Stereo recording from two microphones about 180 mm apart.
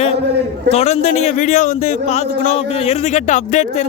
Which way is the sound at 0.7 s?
35° left (ahead or behind).